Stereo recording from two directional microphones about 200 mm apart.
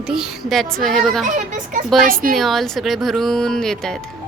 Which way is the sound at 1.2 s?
40° right (ahead or behind).